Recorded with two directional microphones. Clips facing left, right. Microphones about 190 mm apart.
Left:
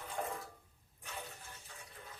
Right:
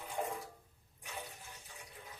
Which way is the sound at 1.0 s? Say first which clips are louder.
Right 1 dB; 15° right (ahead or behind).